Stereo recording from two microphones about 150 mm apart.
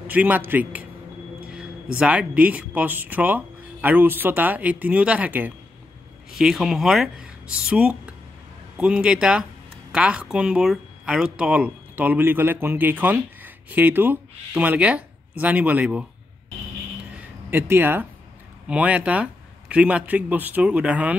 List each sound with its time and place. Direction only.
0.1 s speech: 10° right (ahead or behind)
17.5 s speech: 15° right (ahead or behind)